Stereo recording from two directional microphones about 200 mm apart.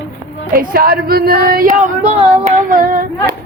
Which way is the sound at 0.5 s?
50° right (ahead or behind).